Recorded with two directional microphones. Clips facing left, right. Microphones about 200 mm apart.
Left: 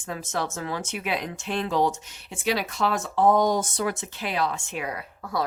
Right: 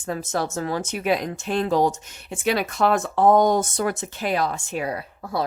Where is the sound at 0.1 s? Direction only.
40° right (ahead or behind).